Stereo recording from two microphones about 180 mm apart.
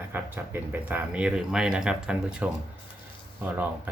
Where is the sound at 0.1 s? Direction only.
10° right (ahead or behind).